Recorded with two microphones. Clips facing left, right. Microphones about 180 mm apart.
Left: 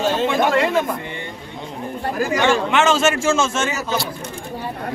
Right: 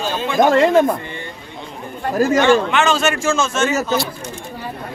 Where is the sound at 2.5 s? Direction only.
5° left (ahead or behind).